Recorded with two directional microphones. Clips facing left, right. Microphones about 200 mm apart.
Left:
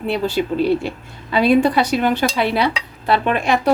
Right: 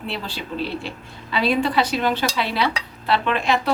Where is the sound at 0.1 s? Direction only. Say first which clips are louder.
Left 12 dB; 45° left (ahead or behind).